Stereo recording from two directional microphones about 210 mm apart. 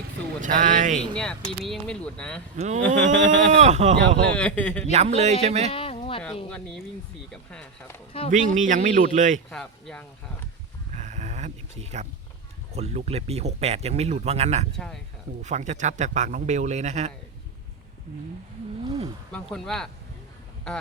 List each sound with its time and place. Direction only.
0.4 s speech: 40° right (ahead or behind)
1.1 s speech: 5° left (ahead or behind)
2.6 s speech: 35° right (ahead or behind)
4.4 s speech: 5° left (ahead or behind)
4.9 s speech: 30° right (ahead or behind)
5.7 s a sound: 25° left (ahead or behind)
6.5 s speech: 5° left (ahead or behind)
8.3 s speech: 35° right (ahead or behind)
9.5 s speech: centre (ahead or behind)
10.9 s snoring: 35° right (ahead or behind)
12.7 s speech: 30° right (ahead or behind)
14.8 s speech: 5° left (ahead or behind)
15.4 s speech: 35° right (ahead or behind)
19.3 s speech: centre (ahead or behind)